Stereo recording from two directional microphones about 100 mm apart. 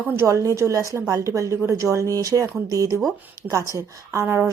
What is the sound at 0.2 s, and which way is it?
Speech, 30° right (ahead or behind).